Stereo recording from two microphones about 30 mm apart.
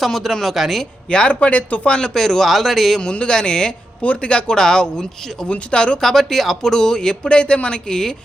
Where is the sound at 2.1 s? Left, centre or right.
Centre.